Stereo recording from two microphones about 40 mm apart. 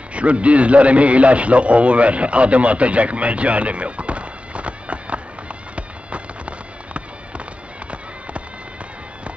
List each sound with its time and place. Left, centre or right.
0.1 s a man's voice: right
5.8 s music: right